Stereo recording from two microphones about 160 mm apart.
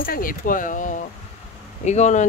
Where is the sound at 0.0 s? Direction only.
60° left (ahead or behind).